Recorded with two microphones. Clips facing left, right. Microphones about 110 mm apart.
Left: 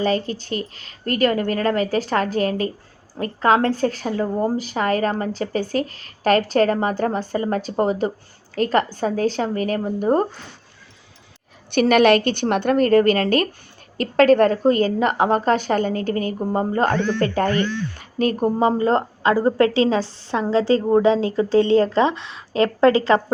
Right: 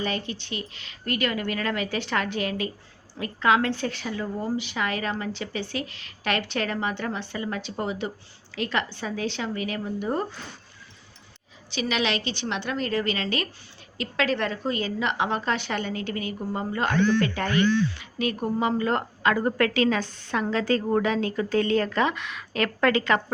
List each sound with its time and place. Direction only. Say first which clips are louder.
0.0 s a woman's voice: left 8 dB; 35° left (ahead or behind)
11.7 s a woman's voice: left 12 dB; 55° left (ahead or behind); by 23.2 s 30° left (ahead or behind)